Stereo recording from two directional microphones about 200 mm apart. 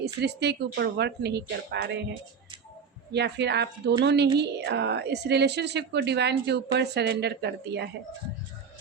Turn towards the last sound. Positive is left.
turn(degrees=-55)  # may be behind; listen again after turning